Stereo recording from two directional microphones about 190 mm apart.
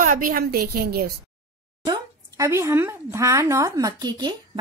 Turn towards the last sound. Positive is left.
turn(degrees=-20)  # may be behind; listen again after turning